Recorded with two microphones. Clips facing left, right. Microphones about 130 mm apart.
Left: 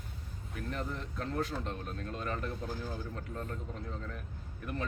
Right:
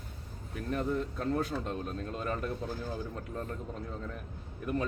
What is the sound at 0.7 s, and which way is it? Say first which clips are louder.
Speech: right 8 dB; 15° right (ahead or behind).